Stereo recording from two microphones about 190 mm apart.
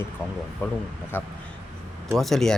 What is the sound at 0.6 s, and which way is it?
Speech, 10° left (ahead or behind).